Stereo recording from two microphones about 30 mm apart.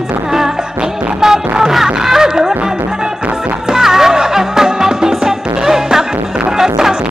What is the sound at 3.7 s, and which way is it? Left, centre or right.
Music, centre.